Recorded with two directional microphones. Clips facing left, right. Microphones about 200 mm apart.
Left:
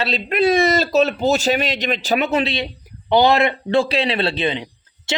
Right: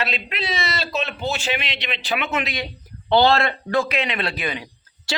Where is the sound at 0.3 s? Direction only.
50° left (ahead or behind); by 2.6 s 30° left (ahead or behind).